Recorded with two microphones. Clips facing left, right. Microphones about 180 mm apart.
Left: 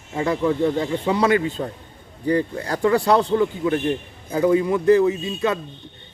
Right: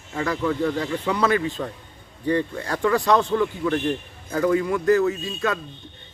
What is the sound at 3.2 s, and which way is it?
Speech, 20° left (ahead or behind).